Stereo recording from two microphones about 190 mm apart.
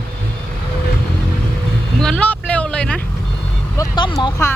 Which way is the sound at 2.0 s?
5° left (ahead or behind).